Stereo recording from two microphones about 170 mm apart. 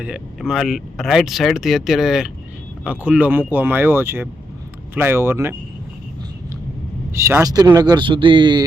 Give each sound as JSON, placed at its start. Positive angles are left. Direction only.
{"t": 0.0, "sound": "speech", "side_deg": -5}
{"t": 7.1, "sound": "speech", "side_deg": -15}